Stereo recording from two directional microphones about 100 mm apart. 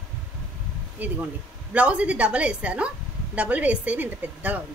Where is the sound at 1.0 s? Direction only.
15° right (ahead or behind).